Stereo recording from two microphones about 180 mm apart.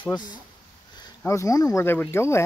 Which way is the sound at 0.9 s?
15° left (ahead or behind).